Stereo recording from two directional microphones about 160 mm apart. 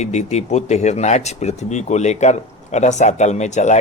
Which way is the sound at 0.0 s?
45° left (ahead or behind).